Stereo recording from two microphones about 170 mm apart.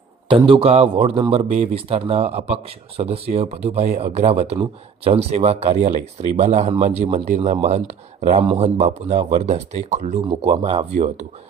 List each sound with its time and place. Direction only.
0.3 s a man's voice: 30° right (ahead or behind)
10.2 s a man's voice: 30° right (ahead or behind)